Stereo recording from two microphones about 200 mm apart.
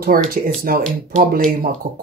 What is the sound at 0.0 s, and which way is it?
Speech, 45° right (ahead or behind).